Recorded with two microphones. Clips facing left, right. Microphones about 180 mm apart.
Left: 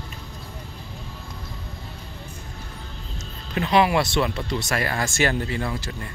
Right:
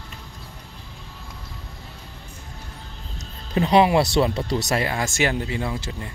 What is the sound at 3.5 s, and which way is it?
Speech, 30° right (ahead or behind).